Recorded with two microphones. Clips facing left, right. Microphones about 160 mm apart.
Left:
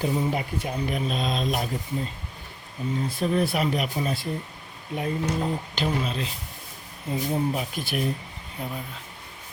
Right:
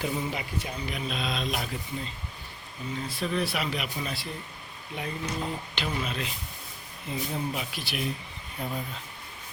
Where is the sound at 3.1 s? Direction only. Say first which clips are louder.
Left 5 dB; 45° left (ahead or behind).